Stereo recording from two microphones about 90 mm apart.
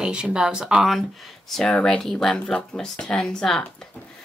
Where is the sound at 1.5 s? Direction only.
5° left (ahead or behind).